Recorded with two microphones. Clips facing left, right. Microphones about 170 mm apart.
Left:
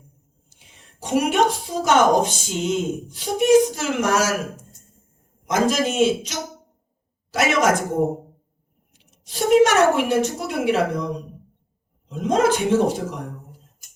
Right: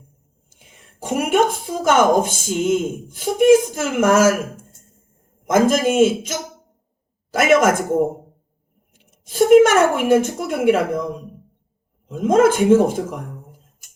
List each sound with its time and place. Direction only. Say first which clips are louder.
0.5 s a woman's voice: right 3 dB; 50° right (ahead or behind)
9.0 s a woman's voice: right 8 dB; 50° right (ahead or behind)
12.0 s speech: right 5 dB; 50° right (ahead or behind)